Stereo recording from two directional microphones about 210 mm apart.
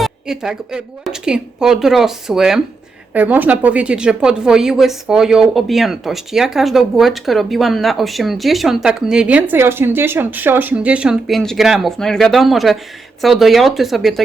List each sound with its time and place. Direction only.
0.0 s speech: centre (ahead or behind)